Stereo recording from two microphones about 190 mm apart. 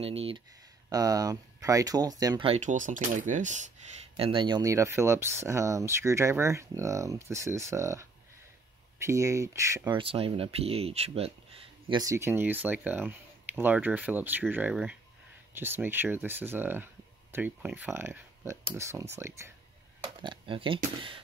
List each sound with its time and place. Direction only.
0.0 s speech: 30° right (ahead or behind)
0.8 s speech: 20° right (ahead or behind)
2.4 s speech: 35° right (ahead or behind)
4.2 s speech: 25° right (ahead or behind)
9.9 s speech: 30° right (ahead or behind)
11.9 s speech: 20° right (ahead or behind)
20.0 s speech: 25° right (ahead or behind)